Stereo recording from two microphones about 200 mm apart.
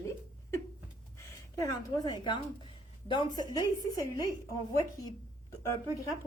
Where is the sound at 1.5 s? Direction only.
15° left (ahead or behind).